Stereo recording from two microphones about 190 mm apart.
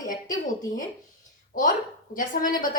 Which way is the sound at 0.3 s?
45° left (ahead or behind).